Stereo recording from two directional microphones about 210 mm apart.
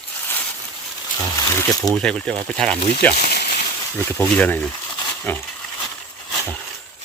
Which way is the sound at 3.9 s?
10° left (ahead or behind).